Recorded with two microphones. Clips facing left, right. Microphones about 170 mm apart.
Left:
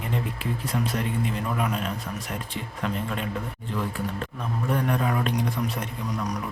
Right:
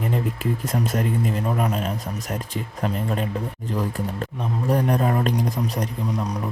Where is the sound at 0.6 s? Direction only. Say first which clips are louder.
Right 2 dB; 45° right (ahead or behind).